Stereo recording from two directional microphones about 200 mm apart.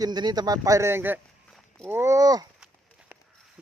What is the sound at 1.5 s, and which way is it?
Walk, 5° left (ahead or behind).